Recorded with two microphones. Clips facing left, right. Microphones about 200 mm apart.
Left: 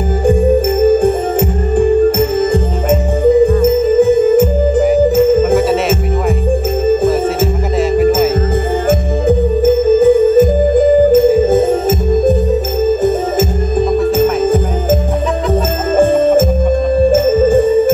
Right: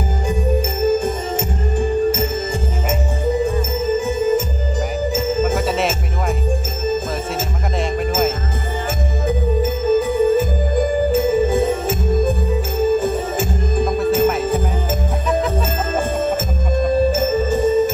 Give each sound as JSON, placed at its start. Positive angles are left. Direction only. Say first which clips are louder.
{"t": 2.0, "sound": "music", "louder": "left 8 dB", "side_deg": 55}
{"t": 9.6, "sound": "music", "louder": "left 8 dB", "side_deg": 50}
{"t": 16.0, "sound": "jingle bell", "louder": "left 13 dB", "side_deg": 50}
{"t": 17.1, "sound": "music", "louder": "left 8 dB", "side_deg": 50}